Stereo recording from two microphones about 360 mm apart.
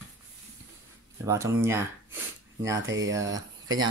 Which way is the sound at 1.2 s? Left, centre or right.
Centre.